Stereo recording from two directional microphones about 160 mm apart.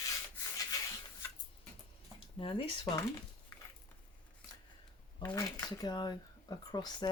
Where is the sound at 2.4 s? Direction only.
35° left (ahead or behind).